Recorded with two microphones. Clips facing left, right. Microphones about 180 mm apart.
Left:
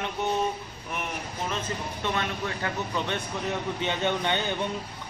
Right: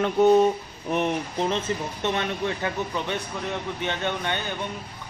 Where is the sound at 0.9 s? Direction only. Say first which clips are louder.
Right 10 dB; 35° right (ahead or behind).